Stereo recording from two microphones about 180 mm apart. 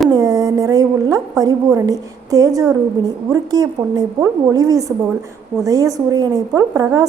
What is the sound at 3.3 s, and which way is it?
A woman's voice, 20° right (ahead or behind).